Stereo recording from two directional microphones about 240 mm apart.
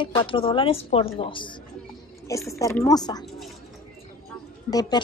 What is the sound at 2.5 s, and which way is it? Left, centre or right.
Speech, centre.